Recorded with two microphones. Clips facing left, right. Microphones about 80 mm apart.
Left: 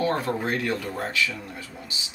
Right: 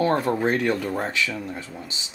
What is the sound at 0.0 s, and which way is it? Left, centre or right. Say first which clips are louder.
Speech: right 4 dB; right.